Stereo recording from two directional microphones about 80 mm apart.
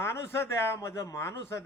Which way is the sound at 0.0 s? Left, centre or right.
Left.